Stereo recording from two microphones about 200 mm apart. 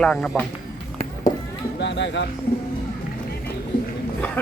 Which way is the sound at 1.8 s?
60° left (ahead or behind).